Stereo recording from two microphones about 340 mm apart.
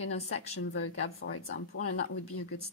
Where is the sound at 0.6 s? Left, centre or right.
Left.